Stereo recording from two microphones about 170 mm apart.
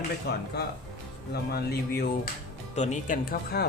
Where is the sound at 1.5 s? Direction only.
70° left (ahead or behind).